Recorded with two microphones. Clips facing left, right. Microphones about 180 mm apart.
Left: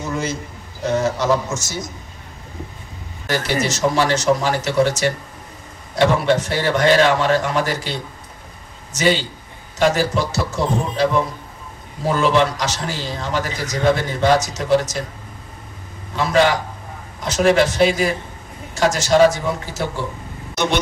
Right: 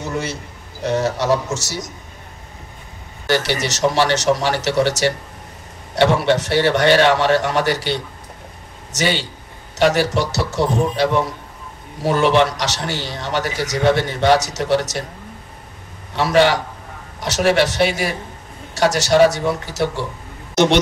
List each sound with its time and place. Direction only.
0.0 s a sound: 70° right (ahead or behind)
0.8 s a man's voice: 70° right (ahead or behind)
3.3 s a man's voice: 75° right (ahead or behind)
12.0 s a man's voice: 70° right (ahead or behind)
16.2 s a man's voice: 75° right (ahead or behind)
20.5 s speech: 85° right